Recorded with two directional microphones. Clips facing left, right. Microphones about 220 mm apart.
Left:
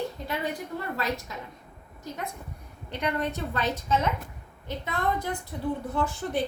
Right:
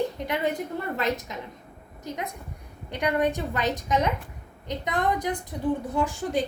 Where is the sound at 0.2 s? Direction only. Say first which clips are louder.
Right 4 dB; 20° right (ahead or behind).